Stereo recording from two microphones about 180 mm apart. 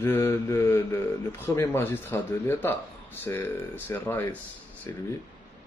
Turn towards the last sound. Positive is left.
turn(degrees=15)  # may be behind; listen again after turning